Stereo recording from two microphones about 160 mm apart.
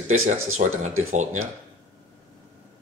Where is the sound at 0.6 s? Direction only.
70° right (ahead or behind).